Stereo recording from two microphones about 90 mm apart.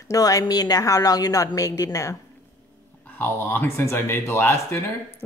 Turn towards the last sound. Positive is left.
turn(degrees=30)  # may be behind; listen again after turning